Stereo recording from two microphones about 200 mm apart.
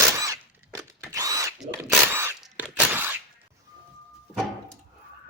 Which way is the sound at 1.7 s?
10° right (ahead or behind).